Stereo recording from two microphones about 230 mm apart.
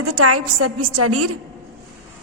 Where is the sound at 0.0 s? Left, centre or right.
Right.